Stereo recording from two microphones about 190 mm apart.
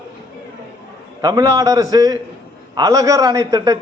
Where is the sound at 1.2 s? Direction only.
20° right (ahead or behind).